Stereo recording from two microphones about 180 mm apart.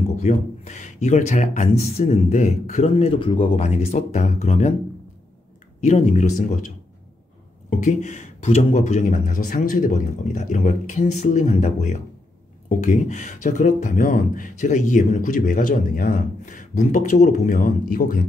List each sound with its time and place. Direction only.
0.2 s speech: 40° left (ahead or behind)
5.8 s speech: 40° left (ahead or behind)
7.8 s speech: 40° left (ahead or behind)
16.7 s speech: 40° left (ahead or behind)